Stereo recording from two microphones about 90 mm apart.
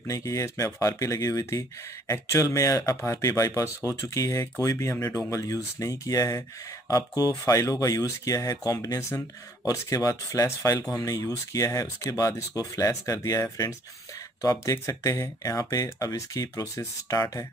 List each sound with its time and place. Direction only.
0.0 s speech: 40° left (ahead or behind)